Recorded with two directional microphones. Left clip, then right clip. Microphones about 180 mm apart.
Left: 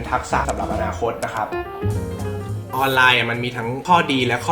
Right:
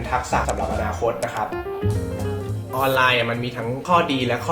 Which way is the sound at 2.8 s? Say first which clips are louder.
Left 3 dB; 30° left (ahead or behind).